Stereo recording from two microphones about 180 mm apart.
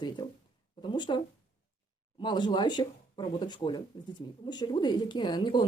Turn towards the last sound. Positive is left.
turn(degrees=25)  # may be behind; listen again after turning